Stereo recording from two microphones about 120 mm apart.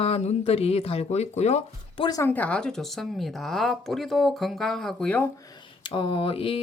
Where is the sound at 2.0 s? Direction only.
30° left (ahead or behind).